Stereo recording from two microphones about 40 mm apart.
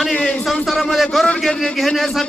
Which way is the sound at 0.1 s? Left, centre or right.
Left.